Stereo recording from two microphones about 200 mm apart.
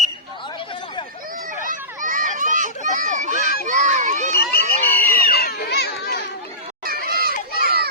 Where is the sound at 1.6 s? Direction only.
40° right (ahead or behind).